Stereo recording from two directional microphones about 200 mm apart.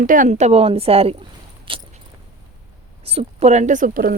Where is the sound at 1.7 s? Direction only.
25° right (ahead or behind).